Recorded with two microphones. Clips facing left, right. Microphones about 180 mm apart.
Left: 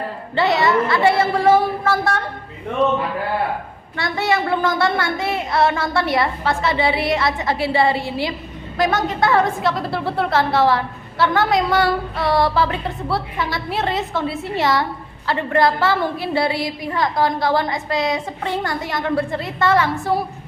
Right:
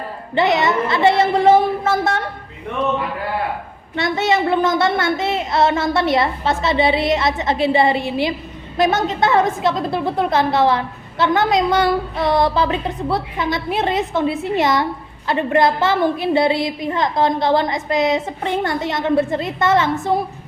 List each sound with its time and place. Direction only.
0.3 s a woman's voice: 20° right (ahead or behind)
3.9 s a woman's voice: 20° right (ahead or behind)